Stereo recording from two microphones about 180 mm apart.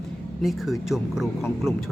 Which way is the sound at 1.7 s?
15° left (ahead or behind).